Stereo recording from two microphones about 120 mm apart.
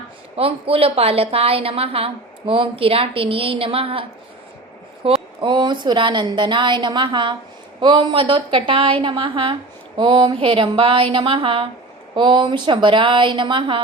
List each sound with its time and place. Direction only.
0.3 s a woman's voice: 55° right (ahead or behind)
5.0 s a woman's voice: 50° right (ahead or behind)